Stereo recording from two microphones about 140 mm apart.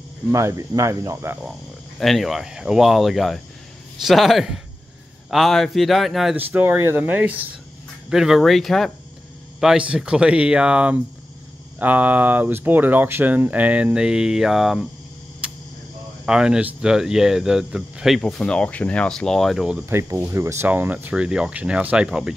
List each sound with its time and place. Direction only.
0.3 s cricket: 20° right (ahead or behind)
2.0 s speech: centre (ahead or behind)
6.3 s speech: 10° right (ahead or behind)
15.4 s a sound: 5° right (ahead or behind)
16.3 s speech: 5° right (ahead or behind)
19.9 s speech: 20° right (ahead or behind)